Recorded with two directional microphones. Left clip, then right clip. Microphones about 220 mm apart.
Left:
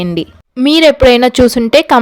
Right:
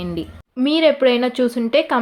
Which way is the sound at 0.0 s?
45° left (ahead or behind).